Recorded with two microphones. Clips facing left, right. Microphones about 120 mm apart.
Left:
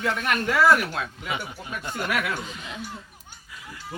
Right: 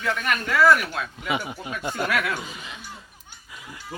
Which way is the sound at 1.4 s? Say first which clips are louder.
Right 4 dB; 15° right (ahead or behind).